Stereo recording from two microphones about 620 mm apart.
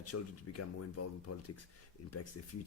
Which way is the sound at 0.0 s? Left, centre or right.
Left.